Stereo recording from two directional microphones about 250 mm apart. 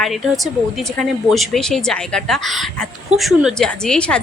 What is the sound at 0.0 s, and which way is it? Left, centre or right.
A woman's voice, centre.